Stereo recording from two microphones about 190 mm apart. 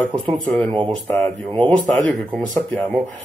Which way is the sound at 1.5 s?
5° left (ahead or behind).